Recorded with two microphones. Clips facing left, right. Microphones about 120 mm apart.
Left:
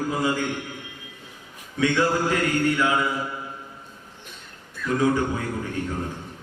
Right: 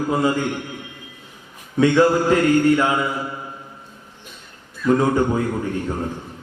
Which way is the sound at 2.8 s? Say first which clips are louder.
Right 3 dB; 35° right (ahead or behind).